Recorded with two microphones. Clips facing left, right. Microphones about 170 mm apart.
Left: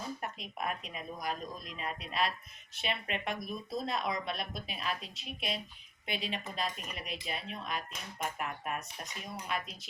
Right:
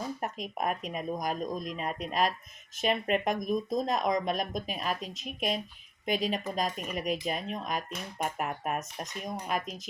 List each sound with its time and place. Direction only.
0.2 s speech: 45° right (ahead or behind)